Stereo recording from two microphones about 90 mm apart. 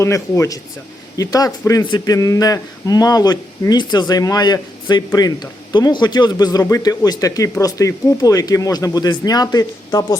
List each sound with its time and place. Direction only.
0.0 s a man's voice: 35° left (ahead or behind)